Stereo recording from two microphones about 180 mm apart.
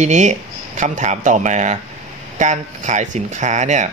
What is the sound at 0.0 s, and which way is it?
Speech, 40° right (ahead or behind).